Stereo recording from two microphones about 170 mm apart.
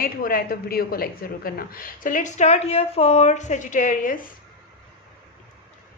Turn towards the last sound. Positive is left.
turn(degrees=50)  # may be behind; listen again after turning